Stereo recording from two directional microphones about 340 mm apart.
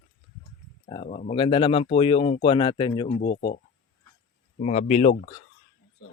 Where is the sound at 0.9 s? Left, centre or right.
Centre.